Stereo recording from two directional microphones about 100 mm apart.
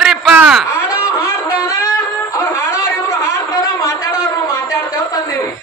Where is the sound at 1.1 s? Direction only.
30° left (ahead or behind).